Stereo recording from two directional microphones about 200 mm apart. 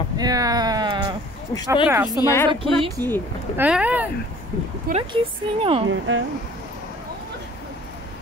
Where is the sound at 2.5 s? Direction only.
25° right (ahead or behind).